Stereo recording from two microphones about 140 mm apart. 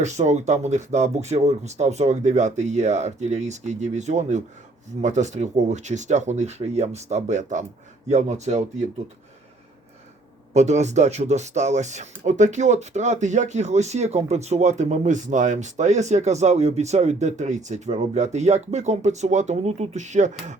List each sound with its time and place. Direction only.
0.0 s speech: 55° right (ahead or behind)
10.5 s speech: 55° right (ahead or behind)